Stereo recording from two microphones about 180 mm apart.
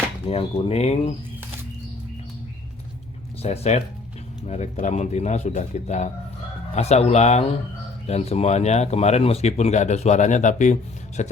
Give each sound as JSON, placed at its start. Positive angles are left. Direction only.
{"t": 0.3, "sound": "speech", "side_deg": 35}
{"t": 3.4, "sound": "speech", "side_deg": 35}